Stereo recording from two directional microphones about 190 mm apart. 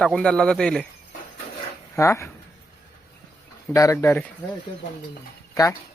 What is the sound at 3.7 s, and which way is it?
Speech, 15° left (ahead or behind).